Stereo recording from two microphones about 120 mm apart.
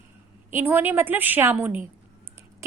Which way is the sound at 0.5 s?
15° right (ahead or behind).